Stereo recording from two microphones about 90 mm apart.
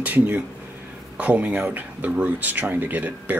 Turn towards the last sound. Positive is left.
turn(degrees=-20)  # may be behind; listen again after turning